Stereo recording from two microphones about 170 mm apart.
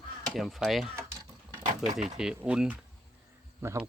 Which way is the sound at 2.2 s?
5° right (ahead or behind).